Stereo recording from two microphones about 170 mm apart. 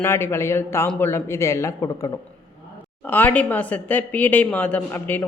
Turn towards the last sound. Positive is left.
turn(degrees=10)  # may be behind; listen again after turning